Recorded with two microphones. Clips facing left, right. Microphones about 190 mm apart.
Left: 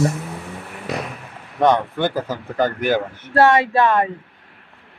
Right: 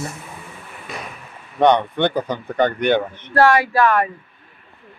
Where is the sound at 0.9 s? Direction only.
75° left (ahead or behind).